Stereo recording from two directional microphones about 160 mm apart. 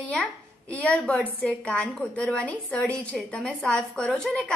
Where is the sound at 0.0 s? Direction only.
10° left (ahead or behind).